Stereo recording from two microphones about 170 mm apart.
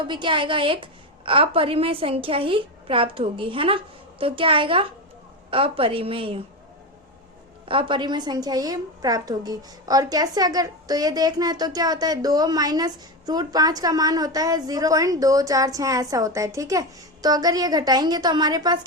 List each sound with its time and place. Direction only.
0.1 s a woman's voice: 30° right (ahead or behind)
7.6 s a woman's voice: 30° right (ahead or behind)